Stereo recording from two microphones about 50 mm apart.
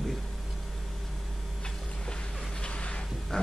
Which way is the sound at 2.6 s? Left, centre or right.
Left.